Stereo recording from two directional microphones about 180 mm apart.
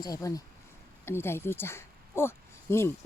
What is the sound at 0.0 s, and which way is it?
Speech, 20° left (ahead or behind).